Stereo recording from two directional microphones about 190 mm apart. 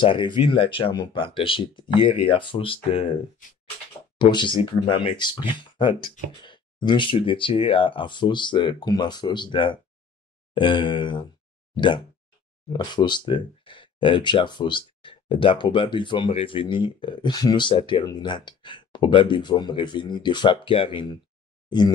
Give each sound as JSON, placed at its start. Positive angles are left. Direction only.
{"t": 0.0, "sound": "speech", "side_deg": 25}
{"t": 4.2, "sound": "speech", "side_deg": 25}